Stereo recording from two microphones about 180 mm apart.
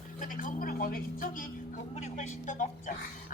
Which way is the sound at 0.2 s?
45° left (ahead or behind).